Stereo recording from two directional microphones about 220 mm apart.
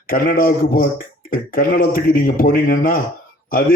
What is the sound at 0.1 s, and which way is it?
A man's voice, 40° left (ahead or behind).